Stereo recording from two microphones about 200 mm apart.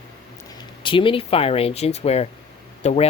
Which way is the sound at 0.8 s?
25° left (ahead or behind).